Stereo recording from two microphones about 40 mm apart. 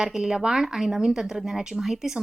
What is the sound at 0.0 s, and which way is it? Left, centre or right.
A woman's voice, centre.